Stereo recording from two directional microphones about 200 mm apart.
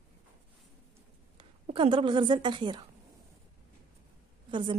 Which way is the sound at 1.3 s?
25° right (ahead or behind).